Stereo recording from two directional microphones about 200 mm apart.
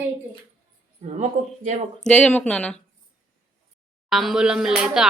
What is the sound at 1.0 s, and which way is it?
Speech, 35° right (ahead or behind).